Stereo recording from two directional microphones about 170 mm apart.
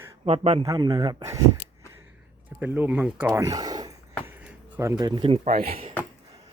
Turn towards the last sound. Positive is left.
turn(degrees=-35)  # may be behind; listen again after turning